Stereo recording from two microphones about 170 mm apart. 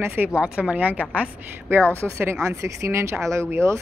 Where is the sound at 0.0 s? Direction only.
10° right (ahead or behind).